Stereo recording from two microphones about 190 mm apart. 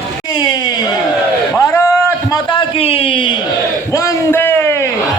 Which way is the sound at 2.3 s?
25° left (ahead or behind).